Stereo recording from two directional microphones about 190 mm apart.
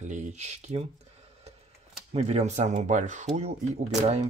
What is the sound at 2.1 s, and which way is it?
Speech, 35° right (ahead or behind).